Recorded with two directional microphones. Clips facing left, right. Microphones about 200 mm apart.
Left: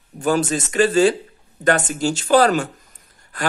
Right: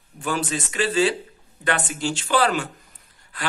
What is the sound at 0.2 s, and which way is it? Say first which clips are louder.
A man's voice: left 7 dB; 45° left (ahead or behind).